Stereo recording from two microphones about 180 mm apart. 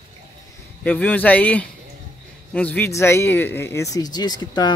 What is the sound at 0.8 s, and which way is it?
A man's voice, 10° left (ahead or behind).